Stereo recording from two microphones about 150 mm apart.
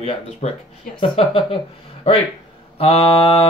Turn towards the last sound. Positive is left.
turn(degrees=40)  # may be behind; listen again after turning